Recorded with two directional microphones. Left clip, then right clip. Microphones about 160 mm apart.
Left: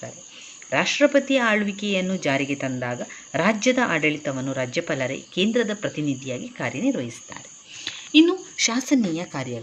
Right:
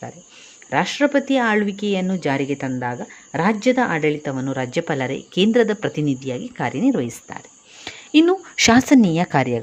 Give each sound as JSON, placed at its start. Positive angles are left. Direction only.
{"t": 0.7, "sound": "speech", "side_deg": -30}
{"t": 7.9, "sound": "a sound", "side_deg": -35}
{"t": 8.5, "sound": "speech", "side_deg": -60}